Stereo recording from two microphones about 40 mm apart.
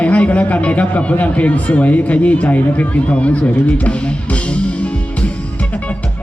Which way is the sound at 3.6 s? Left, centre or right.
Left.